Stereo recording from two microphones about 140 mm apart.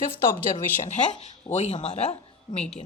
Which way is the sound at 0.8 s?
60° left (ahead or behind).